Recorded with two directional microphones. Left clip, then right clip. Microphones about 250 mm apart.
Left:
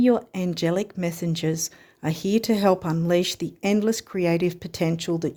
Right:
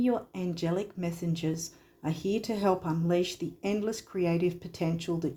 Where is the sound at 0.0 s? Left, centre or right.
Left.